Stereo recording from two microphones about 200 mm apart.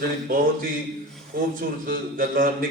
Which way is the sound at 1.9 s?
45° right (ahead or behind).